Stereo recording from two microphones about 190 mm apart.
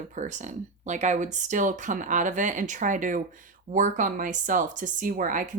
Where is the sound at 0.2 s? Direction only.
40° right (ahead or behind).